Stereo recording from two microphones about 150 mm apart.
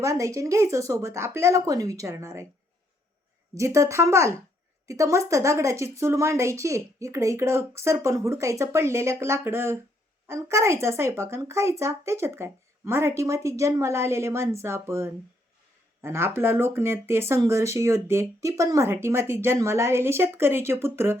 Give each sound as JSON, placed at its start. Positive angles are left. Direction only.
{"t": 0.0, "sound": "a woman's voice", "side_deg": -20}
{"t": 3.5, "sound": "a woman's voice", "side_deg": -20}